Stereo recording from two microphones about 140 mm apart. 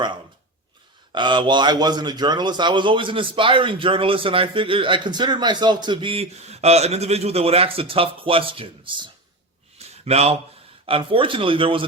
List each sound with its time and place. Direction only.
1.1 s a man's voice: 35° right (ahead or behind)
9.7 s a sound: 50° right (ahead or behind)
10.8 s a man's voice: 40° right (ahead or behind)